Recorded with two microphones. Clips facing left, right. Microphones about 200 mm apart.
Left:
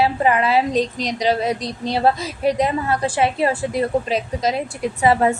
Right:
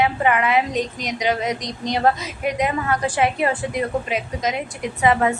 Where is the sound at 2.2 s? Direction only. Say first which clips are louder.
Left 4 dB; 35° left (ahead or behind).